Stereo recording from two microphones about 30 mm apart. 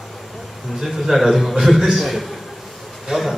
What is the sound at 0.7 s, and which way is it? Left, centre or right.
A man's voice, centre.